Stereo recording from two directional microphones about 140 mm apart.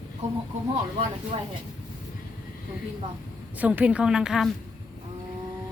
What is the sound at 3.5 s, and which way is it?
Speech, 10° right (ahead or behind).